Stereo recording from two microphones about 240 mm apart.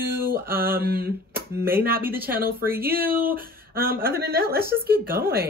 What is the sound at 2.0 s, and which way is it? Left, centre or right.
Speech, centre.